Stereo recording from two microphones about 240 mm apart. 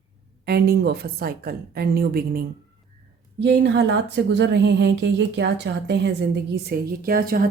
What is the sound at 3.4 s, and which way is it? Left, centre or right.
Speech, right.